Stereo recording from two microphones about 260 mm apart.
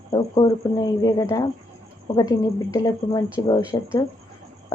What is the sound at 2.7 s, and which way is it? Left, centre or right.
Speech, centre.